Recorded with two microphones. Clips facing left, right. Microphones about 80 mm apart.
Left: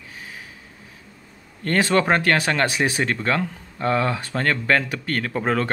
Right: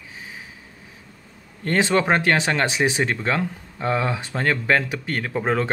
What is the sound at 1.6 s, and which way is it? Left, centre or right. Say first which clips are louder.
Speech: even; centre.